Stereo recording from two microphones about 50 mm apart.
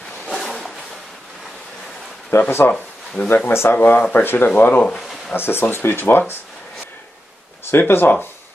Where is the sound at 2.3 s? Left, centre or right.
Left.